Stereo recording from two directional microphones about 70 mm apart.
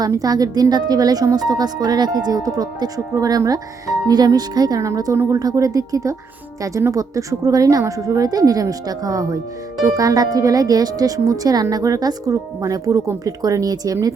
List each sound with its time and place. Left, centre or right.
0.1 s speech: right